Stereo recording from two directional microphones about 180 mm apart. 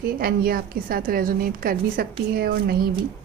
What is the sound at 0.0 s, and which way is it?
A woman's voice, 55° right (ahead or behind).